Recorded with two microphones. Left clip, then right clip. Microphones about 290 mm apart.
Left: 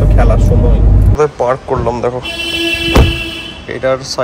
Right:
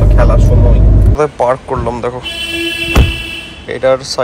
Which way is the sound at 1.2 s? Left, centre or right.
Centre.